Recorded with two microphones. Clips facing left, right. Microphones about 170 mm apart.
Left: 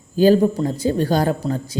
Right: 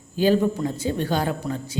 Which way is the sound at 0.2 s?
40° left (ahead or behind).